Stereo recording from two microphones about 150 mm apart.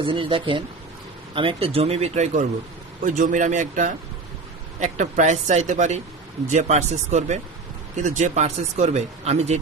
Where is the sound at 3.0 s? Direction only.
60° right (ahead or behind).